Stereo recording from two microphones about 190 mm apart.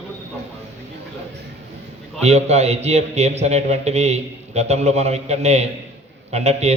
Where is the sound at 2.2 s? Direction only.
35° right (ahead or behind).